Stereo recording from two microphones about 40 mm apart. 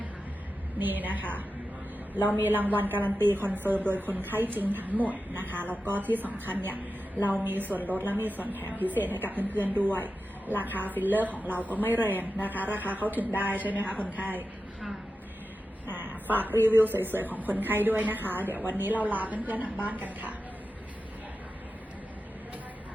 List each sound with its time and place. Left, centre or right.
0.8 s a woman's voice: right
11.7 s a woman's voice: left
11.9 s a woman's voice: right
15.9 s a sound: right
16.3 s a woman's voice: right
16.6 s speech: right
16.8 s a woman's voice: right